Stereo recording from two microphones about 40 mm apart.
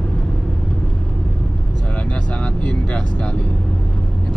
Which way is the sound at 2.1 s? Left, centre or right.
Left.